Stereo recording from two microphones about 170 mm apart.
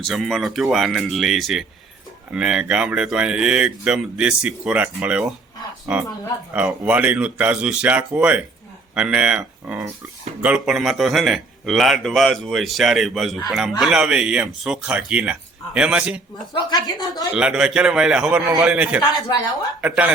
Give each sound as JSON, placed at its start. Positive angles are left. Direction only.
{"t": 0.0, "sound": "a man's voice", "side_deg": 0}
{"t": 6.5, "sound": "a man's voice", "side_deg": -5}
{"t": 16.5, "sound": "speech", "side_deg": 25}
{"t": 17.3, "sound": "a man's voice", "side_deg": -5}